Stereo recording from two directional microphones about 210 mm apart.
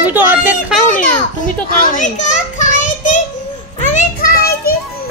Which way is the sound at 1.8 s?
40° left (ahead or behind).